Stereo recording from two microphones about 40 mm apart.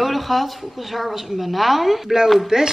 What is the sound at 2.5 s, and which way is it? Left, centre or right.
Speech, centre.